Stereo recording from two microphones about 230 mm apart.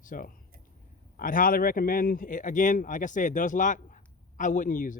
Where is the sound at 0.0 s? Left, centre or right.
Left.